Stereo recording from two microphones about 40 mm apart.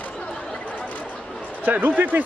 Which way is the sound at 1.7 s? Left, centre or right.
Right.